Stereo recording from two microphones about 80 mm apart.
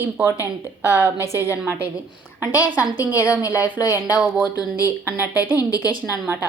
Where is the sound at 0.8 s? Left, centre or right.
Right; by 4.4 s centre.